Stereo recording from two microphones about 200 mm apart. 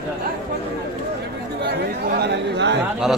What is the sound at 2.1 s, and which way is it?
Speech, 55° right (ahead or behind).